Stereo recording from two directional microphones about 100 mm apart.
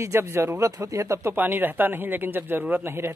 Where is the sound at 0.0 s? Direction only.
25° right (ahead or behind).